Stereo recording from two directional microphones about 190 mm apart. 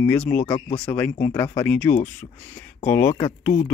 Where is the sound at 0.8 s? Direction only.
10° left (ahead or behind).